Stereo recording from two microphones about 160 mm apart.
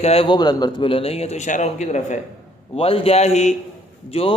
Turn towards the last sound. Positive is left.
turn(degrees=35)  # may be behind; listen again after turning